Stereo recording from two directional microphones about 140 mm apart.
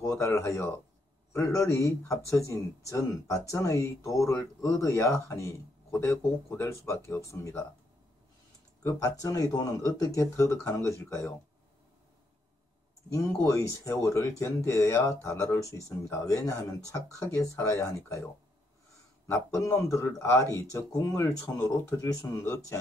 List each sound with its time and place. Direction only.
0.1 s a man's voice: 20° left (ahead or behind)
9.2 s a man's voice: 25° left (ahead or behind)
13.1 s a man's voice: 20° left (ahead or behind)
19.5 s a man's voice: 20° left (ahead or behind)